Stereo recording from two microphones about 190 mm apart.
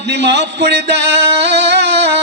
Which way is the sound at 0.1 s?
65° right (ahead or behind).